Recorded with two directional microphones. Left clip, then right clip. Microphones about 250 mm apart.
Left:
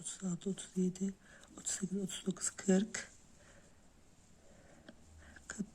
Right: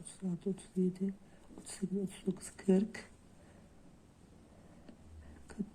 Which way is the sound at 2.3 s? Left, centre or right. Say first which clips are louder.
Right 2 dB; left.